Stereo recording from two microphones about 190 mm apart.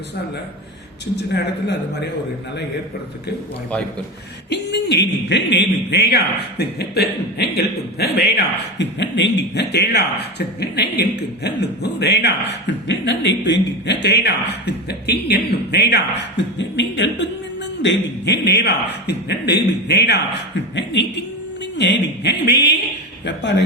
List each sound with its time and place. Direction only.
1.1 s speech: 60° left (ahead or behind)
4.4 s speech: 60° left (ahead or behind)